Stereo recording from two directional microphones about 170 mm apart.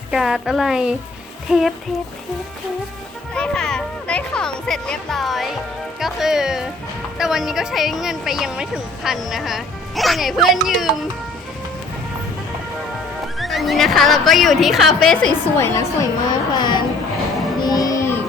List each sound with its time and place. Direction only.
0.1 s speech: 5° right (ahead or behind)
3.3 s speech: 5° left (ahead or behind)
13.2 s speech: centre (ahead or behind); by 16.8 s 25° left (ahead or behind)
17.6 s music: 20° left (ahead or behind)